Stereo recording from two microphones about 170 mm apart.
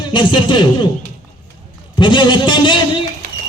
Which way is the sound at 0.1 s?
30° left (ahead or behind).